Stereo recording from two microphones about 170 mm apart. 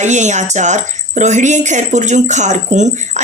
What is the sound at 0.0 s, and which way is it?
A woman's voice, 45° right (ahead or behind).